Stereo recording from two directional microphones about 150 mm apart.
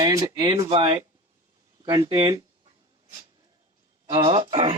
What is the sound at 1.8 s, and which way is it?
Speech, 25° right (ahead or behind).